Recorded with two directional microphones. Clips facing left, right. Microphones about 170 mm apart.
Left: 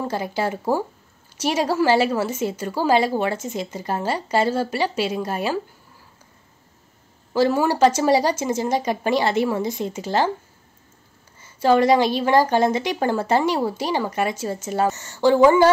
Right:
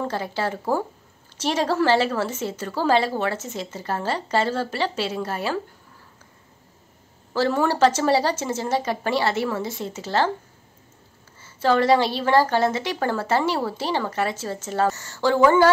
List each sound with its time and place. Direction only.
0.0 s a woman's voice: 10° left (ahead or behind)
7.3 s a woman's voice: 15° left (ahead or behind)
11.4 s a woman's voice: 15° left (ahead or behind)